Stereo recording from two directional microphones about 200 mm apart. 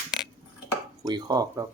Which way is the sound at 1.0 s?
20° right (ahead or behind).